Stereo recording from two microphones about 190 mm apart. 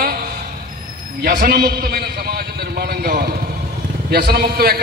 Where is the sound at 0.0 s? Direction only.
55° right (ahead or behind).